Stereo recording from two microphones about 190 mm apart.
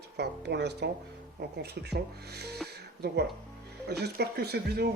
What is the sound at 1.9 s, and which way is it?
Speech, 60° right (ahead or behind).